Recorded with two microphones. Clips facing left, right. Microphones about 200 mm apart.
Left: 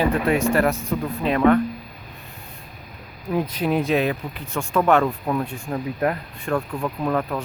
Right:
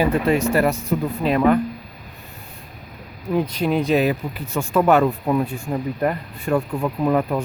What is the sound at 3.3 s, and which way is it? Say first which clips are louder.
Speech: right 2 dB; 5° left (ahead or behind).